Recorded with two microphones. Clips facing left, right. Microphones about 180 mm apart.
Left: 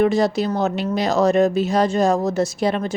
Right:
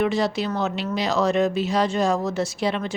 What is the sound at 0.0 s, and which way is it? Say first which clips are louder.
Speech: left 5 dB; 45° left (ahead or behind).